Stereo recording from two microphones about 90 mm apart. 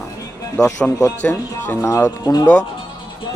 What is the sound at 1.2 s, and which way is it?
Speech, 25° left (ahead or behind).